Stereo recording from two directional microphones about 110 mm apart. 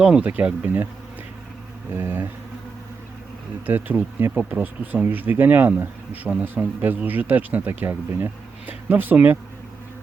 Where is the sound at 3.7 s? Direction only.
15° right (ahead or behind).